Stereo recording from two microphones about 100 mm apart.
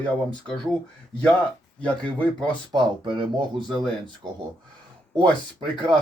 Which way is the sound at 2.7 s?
50° right (ahead or behind).